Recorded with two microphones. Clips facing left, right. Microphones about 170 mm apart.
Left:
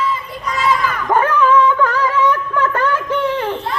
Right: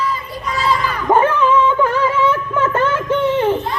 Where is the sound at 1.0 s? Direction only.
20° right (ahead or behind).